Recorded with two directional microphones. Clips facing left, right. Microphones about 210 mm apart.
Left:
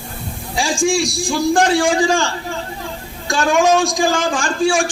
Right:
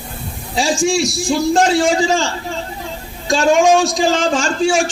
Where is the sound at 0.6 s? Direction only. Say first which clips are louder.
Right 1 dB; 20° right (ahead or behind).